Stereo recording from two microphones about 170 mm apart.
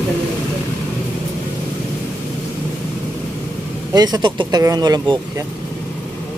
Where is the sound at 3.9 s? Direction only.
25° right (ahead or behind).